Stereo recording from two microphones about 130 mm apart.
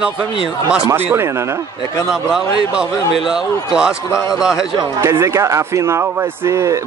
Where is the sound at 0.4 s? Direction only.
5° right (ahead or behind).